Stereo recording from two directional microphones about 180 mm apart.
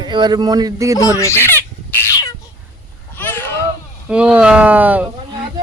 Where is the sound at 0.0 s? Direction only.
25° right (ahead or behind).